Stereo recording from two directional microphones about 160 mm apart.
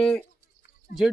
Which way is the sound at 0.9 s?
65° left (ahead or behind).